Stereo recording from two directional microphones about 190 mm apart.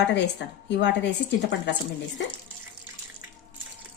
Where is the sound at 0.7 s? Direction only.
65° left (ahead or behind).